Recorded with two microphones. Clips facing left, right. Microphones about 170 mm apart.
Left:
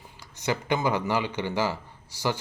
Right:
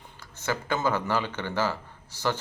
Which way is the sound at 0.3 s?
15° left (ahead or behind).